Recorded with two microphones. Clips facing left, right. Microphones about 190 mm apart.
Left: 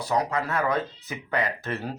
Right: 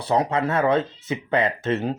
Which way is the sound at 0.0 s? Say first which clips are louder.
Right 4 dB; 30° right (ahead or behind).